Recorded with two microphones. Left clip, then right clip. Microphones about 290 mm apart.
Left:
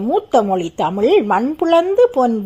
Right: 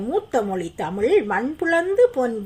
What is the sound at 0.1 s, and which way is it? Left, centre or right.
A woman's voice, centre.